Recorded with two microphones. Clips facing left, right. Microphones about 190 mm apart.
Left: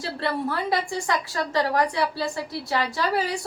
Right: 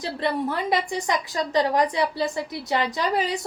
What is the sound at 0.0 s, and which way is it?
A woman's voice, 20° right (ahead or behind).